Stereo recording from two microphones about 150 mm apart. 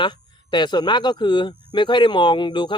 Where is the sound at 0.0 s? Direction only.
30° left (ahead or behind).